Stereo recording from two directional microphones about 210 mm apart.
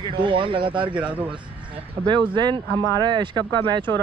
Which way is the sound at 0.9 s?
5° right (ahead or behind).